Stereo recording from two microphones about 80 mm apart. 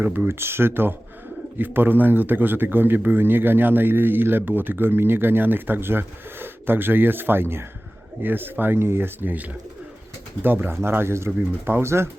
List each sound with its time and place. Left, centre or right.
0.0 s a man's voice: right